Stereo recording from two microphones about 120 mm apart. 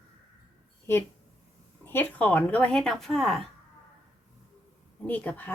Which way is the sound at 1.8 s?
15° left (ahead or behind).